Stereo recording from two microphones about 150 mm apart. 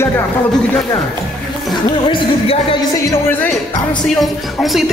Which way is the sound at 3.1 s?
15° left (ahead or behind).